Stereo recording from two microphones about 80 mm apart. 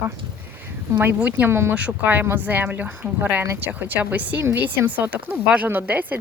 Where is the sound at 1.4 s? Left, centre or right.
Right.